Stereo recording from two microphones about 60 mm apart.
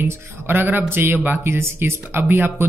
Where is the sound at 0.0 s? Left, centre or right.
Right.